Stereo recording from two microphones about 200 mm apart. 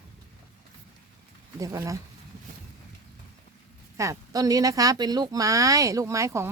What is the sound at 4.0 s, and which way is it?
Speech, 15° right (ahead or behind).